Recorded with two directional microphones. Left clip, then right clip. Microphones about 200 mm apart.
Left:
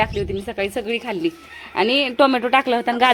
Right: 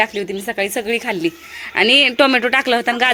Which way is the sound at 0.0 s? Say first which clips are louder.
Right 3 dB; 15° right (ahead or behind).